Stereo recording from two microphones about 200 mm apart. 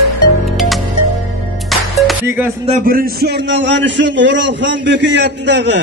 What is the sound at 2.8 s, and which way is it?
A man's voice, 50° right (ahead or behind).